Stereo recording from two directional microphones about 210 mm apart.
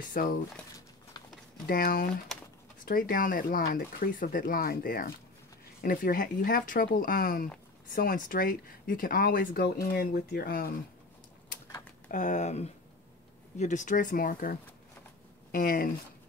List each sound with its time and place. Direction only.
0.1 s speech: 45° left (ahead or behind)
1.7 s speech: 45° left (ahead or behind)
12.1 s speech: 35° left (ahead or behind)